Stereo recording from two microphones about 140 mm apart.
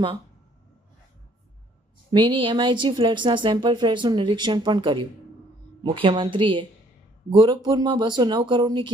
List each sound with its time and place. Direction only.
2.1 s speech: 35° right (ahead or behind)